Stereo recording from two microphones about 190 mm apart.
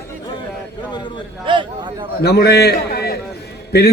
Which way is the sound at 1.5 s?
25° right (ahead or behind).